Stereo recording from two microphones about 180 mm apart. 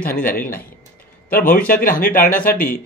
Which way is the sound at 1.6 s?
55° left (ahead or behind).